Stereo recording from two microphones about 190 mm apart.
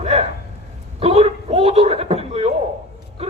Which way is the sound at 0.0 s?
30° right (ahead or behind).